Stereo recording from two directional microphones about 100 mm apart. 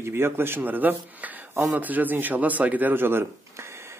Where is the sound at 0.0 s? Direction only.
25° right (ahead or behind).